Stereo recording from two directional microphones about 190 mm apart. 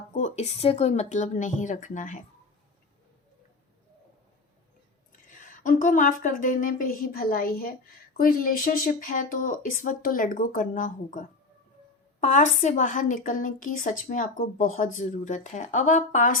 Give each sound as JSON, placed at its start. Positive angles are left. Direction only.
{"t": 0.1, "sound": "a woman's voice", "side_deg": 35}
{"t": 5.4, "sound": "speech", "side_deg": 45}